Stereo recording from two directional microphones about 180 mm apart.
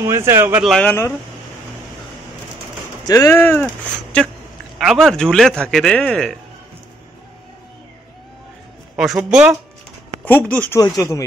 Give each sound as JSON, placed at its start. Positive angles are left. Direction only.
{"t": 0.0, "sound": "speech", "side_deg": -15}
{"t": 0.7, "sound": "speech", "side_deg": 10}
{"t": 3.1, "sound": "speech", "side_deg": 15}
{"t": 8.9, "sound": "speech", "side_deg": -5}
{"t": 10.2, "sound": "speech", "side_deg": 10}